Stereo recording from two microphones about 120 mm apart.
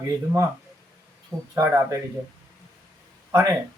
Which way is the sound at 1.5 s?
25° right (ahead or behind).